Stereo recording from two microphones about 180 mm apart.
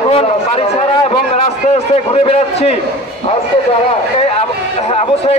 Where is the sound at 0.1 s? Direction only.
35° left (ahead or behind).